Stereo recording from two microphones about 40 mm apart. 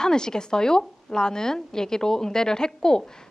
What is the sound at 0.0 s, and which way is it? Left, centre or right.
A woman's voice, centre.